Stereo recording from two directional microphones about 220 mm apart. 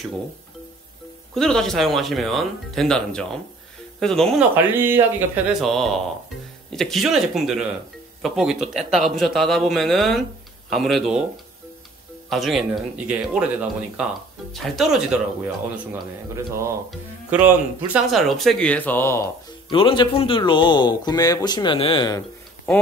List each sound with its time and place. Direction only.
1.3 s speech: centre (ahead or behind)
4.7 s speech: 10° right (ahead or behind)
12.3 s speech: centre (ahead or behind)
18.1 s speech: centre (ahead or behind)
19.7 s speech: 20° left (ahead or behind)